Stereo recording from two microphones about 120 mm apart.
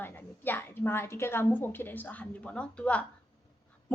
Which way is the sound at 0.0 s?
15° left (ahead or behind).